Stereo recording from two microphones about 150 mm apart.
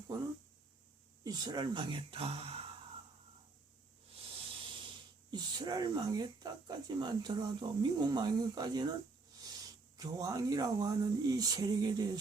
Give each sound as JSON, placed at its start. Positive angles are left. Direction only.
{"t": 1.2, "sound": "speech", "side_deg": -25}
{"t": 4.1, "sound": "speech", "side_deg": -40}